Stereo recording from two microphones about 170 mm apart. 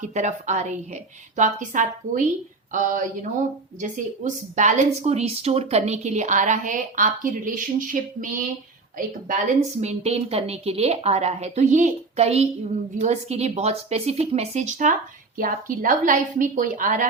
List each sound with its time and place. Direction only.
0.0 s a woman's voice: 45° right (ahead or behind)